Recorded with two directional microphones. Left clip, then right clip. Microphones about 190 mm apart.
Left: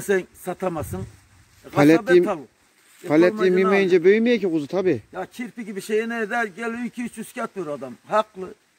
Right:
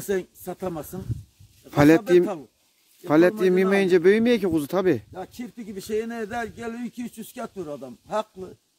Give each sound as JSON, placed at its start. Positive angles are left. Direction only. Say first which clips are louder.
{"t": 0.0, "sound": "speech", "louder": "left 5 dB", "side_deg": 0}
{"t": 1.7, "sound": "a man's voice", "louder": "left 1 dB", "side_deg": -20}
{"t": 5.1, "sound": "speech", "louder": "left 5 dB", "side_deg": 0}